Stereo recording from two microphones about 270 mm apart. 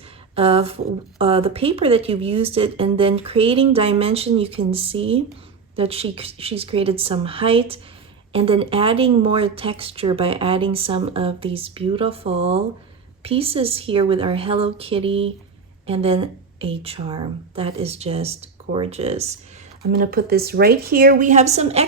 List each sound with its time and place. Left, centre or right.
0.3 s a sound: right
1.2 s speech: right
19.8 s speech: right